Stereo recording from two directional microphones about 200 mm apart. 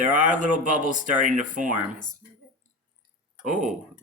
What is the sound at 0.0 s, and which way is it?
Speech, 40° right (ahead or behind).